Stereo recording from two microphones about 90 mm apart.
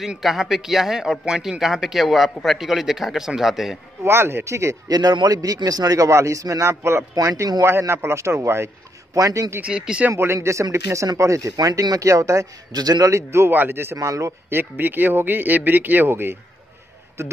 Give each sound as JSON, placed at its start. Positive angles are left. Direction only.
{"t": 0.0, "sound": "a man's voice", "side_deg": -5}
{"t": 4.0, "sound": "speech", "side_deg": -25}
{"t": 4.9, "sound": "a man's voice", "side_deg": -50}
{"t": 9.6, "sound": "speech", "side_deg": -10}
{"t": 10.1, "sound": "a man's voice", "side_deg": -30}
{"t": 13.9, "sound": "a man's voice", "side_deg": -35}
{"t": 14.6, "sound": "speech", "side_deg": -20}